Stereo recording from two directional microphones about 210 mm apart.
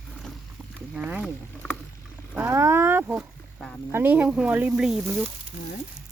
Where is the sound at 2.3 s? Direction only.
10° right (ahead or behind).